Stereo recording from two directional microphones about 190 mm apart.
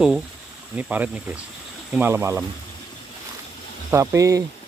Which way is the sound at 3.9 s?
15° right (ahead or behind).